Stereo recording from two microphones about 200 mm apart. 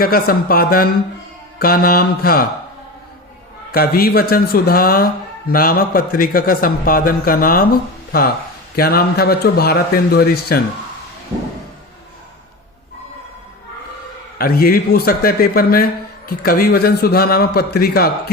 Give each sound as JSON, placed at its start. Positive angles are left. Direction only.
{"t": 0.0, "sound": "a man's voice", "side_deg": 50}
{"t": 3.7, "sound": "a man's voice", "side_deg": 50}
{"t": 14.3, "sound": "a man's voice", "side_deg": 50}